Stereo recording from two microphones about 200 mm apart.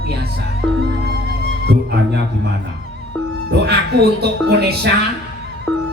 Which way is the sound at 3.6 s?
55° right (ahead or behind).